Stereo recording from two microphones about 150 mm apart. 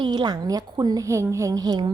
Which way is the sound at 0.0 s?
30° right (ahead or behind).